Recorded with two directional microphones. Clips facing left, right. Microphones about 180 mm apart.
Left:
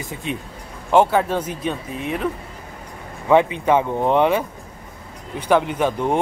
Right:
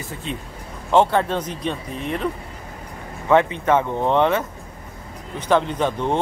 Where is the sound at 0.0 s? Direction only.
15° left (ahead or behind).